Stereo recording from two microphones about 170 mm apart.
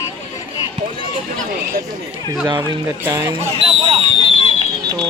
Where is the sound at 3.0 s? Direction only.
15° right (ahead or behind).